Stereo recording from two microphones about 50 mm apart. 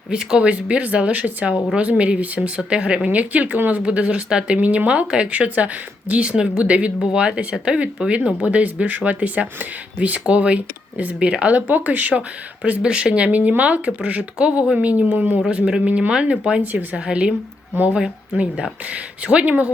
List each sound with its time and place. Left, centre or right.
0.1 s a woman's voice: centre
6.3 s speech: centre
6.6 s a woman's voice: right
12.8 s a woman's voice: centre
15.4 s a woman's voice: centre
18.9 s a woman's voice: right